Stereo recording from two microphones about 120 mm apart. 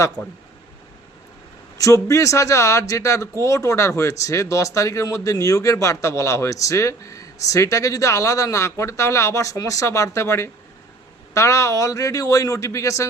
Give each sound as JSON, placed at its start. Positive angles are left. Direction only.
{"t": 1.8, "sound": "speech", "side_deg": 25}